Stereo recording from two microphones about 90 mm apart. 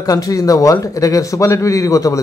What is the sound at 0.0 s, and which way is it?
A man's voice, 40° left (ahead or behind).